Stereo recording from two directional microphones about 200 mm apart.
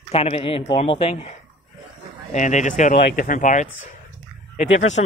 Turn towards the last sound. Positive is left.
turn(degrees=35)  # may be behind; listen again after turning